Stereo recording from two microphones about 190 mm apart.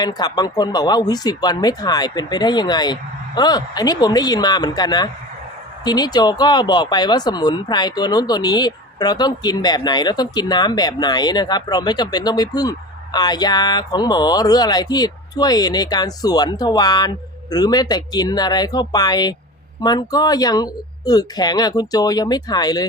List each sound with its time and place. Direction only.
0.0 s speech: 20° left (ahead or behind)